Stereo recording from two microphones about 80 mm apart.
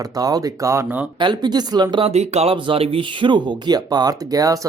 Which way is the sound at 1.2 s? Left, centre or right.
Right.